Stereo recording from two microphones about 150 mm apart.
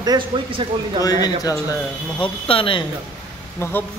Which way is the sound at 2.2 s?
35° left (ahead or behind).